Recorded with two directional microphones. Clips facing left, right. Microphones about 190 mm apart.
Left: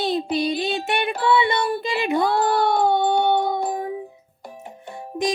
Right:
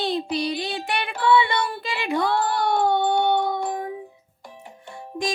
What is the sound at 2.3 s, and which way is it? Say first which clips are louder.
Speech: left 3 dB; 40° left (ahead or behind).